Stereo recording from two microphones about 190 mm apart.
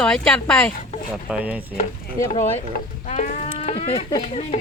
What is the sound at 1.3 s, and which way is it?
Chopping, 5° right (ahead or behind).